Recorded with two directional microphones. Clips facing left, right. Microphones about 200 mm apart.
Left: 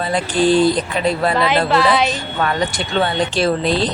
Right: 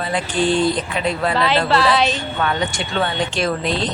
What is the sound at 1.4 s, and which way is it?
Speech, 15° left (ahead or behind).